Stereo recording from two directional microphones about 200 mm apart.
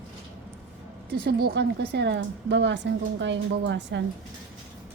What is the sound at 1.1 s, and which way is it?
A woman's voice, 55° right (ahead or behind).